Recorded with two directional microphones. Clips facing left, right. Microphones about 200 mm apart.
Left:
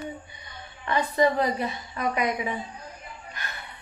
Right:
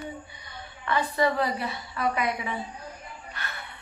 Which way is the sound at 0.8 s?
20° left (ahead or behind).